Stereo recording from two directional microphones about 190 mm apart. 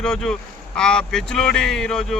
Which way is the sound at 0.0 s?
5° left (ahead or behind).